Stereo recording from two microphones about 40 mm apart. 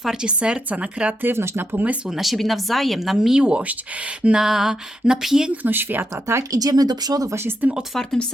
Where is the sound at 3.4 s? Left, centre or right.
Right.